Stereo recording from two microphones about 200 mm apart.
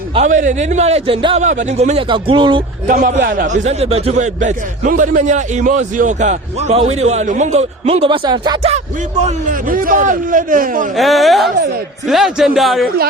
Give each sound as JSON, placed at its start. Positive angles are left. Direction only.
{"t": 0.1, "sound": "speech", "side_deg": -35}
{"t": 2.8, "sound": "speech", "side_deg": -40}
{"t": 9.2, "sound": "speech", "side_deg": -45}
{"t": 10.9, "sound": "speech", "side_deg": 0}